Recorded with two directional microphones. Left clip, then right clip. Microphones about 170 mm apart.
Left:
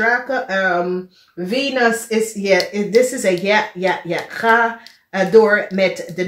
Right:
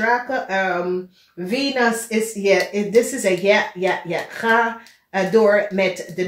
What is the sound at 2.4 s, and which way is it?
Speech, 35° left (ahead or behind).